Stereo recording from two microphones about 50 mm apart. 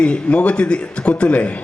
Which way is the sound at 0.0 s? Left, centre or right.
Left.